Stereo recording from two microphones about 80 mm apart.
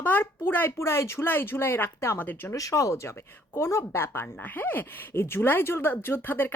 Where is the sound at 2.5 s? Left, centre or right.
Left.